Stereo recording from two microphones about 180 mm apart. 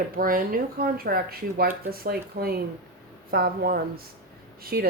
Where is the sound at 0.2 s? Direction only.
50° right (ahead or behind).